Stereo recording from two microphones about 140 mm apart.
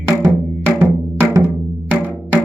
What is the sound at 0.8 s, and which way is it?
Music, 15° right (ahead or behind).